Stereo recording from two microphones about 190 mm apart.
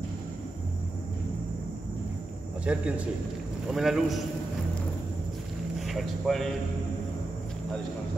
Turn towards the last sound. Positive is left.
turn(degrees=0)  # may be behind; listen again after turning